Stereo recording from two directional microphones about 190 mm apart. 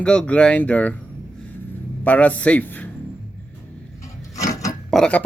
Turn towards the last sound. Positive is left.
turn(degrees=5)  # may be behind; listen again after turning